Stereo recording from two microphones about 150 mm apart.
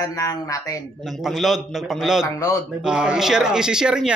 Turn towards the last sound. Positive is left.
turn(degrees=-5)  # may be behind; listen again after turning